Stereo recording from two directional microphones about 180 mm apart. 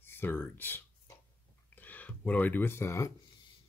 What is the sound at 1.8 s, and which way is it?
Speech, 10° left (ahead or behind).